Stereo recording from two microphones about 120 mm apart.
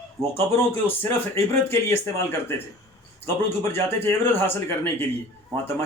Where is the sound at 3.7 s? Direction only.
20° left (ahead or behind).